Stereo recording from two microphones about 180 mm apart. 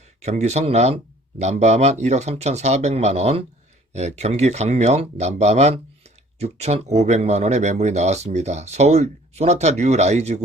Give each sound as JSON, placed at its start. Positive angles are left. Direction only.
{"t": 0.2, "sound": "speech", "side_deg": -40}